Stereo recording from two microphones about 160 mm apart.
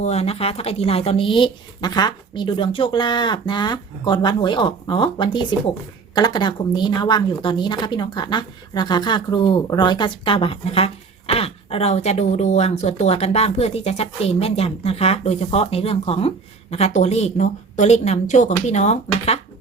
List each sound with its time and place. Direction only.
0.0 s speech: 40° left (ahead or behind)